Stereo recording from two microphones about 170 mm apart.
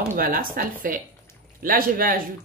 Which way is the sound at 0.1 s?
60° right (ahead or behind).